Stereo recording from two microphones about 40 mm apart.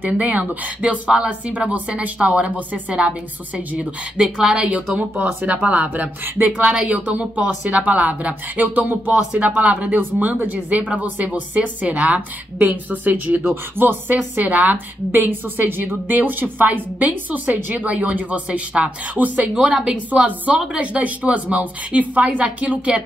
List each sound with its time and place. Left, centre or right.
0.0 s a woman's voice: right
4.2 s a woman's voice: centre
4.6 s speech: right
5.2 s speech: right
6.4 s speech: right
6.9 s speech: right
7.8 s speech: right
9.1 s speech: right
9.9 s speech: right
13.7 s a woman's voice: right
15.0 s a woman's voice: right
17.9 s speech: right
19.1 s speech: right